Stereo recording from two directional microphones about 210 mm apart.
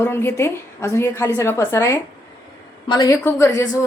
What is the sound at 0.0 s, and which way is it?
A woman's voice, 10° left (ahead or behind).